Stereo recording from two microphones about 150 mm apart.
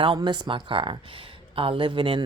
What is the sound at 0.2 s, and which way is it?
Speech, 30° right (ahead or behind).